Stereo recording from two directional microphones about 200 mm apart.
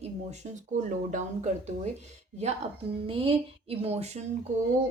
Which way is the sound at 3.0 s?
25° right (ahead or behind).